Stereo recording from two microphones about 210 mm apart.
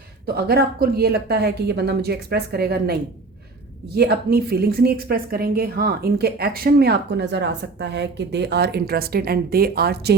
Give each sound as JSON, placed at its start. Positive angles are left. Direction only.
{"t": 0.3, "sound": "a woman's voice", "side_deg": -50}